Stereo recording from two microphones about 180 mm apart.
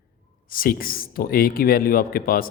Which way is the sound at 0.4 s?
55° left (ahead or behind).